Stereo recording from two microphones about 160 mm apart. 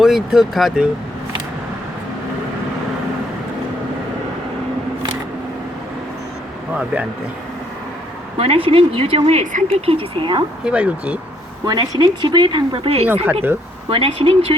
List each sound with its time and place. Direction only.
0.0 s speech: centre (ahead or behind)
6.7 s speech: 10° right (ahead or behind)
8.4 s speech: 35° right (ahead or behind); by 9.8 s 50° right (ahead or behind)
9.8 s speech: 35° right (ahead or behind)
10.6 s speech: 5° right (ahead or behind)
11.6 s speech: 25° right (ahead or behind)